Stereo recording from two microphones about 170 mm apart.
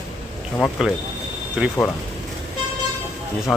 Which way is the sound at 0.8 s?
Centre (ahead or behind).